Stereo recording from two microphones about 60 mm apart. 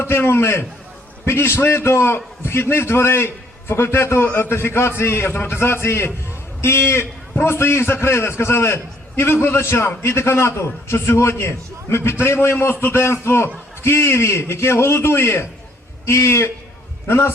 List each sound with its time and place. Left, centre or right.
0.0 s a man's voice: left